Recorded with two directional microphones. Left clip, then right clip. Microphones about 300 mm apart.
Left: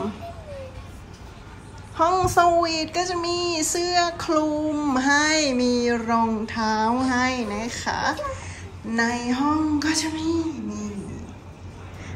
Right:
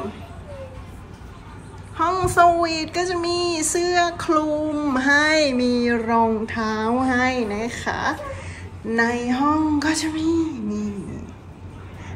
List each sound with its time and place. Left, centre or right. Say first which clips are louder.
2.0 s a woman's voice: right 1 dB; centre
3.9 s child singing: right 2 dB; centre